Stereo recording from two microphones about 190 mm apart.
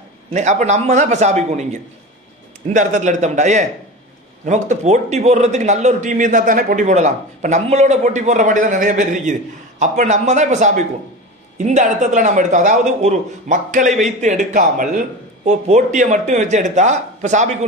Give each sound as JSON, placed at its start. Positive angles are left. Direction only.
{"t": 0.3, "sound": "a man's voice", "side_deg": -40}